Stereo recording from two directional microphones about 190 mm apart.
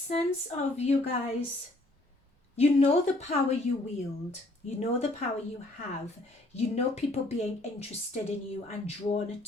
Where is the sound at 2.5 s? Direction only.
35° left (ahead or behind).